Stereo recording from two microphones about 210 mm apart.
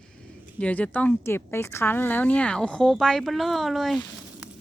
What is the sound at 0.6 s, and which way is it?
A woman's voice, 5° left (ahead or behind).